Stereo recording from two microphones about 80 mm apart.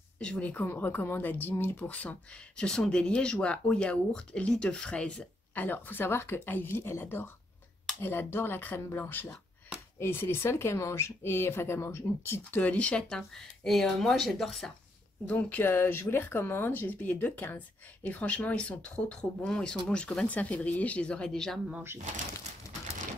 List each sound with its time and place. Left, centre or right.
0.2 s speech: centre; by 12.4 s left
12.4 s speech: centre
13.7 s speech: centre
15.2 s speech: centre